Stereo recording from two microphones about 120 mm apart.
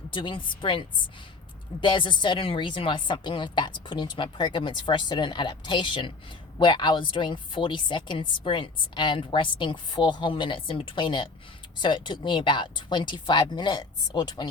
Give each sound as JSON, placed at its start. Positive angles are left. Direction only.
{"t": 0.1, "sound": "a woman's voice", "side_deg": 45}